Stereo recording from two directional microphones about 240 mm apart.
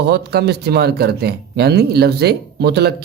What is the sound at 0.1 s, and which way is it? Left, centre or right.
Speech, right.